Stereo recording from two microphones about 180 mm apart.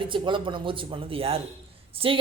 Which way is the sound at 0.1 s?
25° right (ahead or behind).